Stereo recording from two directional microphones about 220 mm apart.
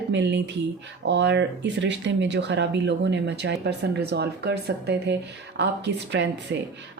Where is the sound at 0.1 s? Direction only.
55° right (ahead or behind).